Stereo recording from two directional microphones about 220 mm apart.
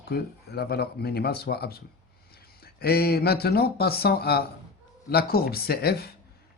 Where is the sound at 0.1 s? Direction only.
45° left (ahead or behind).